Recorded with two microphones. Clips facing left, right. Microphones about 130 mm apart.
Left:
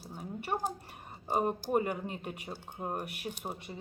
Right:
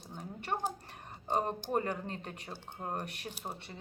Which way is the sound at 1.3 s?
10° left (ahead or behind).